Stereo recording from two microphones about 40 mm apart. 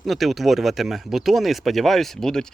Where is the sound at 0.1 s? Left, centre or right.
Centre.